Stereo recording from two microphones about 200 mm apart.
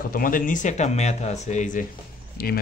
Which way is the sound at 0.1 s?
45° left (ahead or behind).